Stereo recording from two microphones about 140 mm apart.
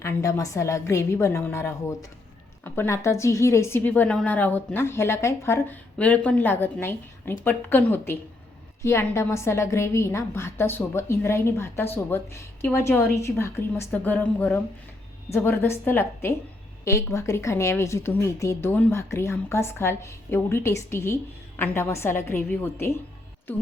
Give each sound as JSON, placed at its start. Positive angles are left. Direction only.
{"t": 0.0, "sound": "a woman's voice", "side_deg": 20}